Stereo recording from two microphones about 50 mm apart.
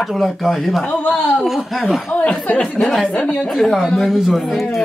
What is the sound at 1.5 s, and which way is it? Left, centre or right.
Speech, centre.